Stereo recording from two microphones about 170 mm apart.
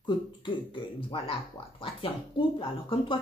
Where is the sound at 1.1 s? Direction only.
35° left (ahead or behind).